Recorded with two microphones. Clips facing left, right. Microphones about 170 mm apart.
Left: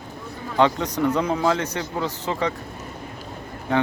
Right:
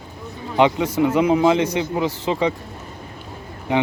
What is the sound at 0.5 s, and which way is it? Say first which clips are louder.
Speech: right 3 dB; 15° right (ahead or behind).